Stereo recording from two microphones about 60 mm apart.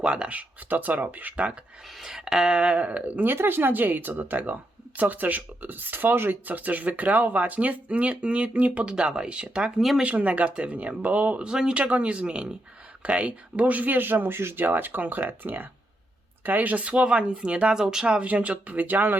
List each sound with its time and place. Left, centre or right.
0.0 s a woman's voice: centre
2.0 s a woman's voice: centre; by 3.3 s right
3.3 s a woman's voice: right